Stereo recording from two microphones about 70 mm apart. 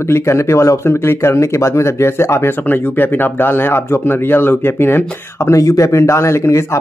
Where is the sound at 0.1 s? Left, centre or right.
Left.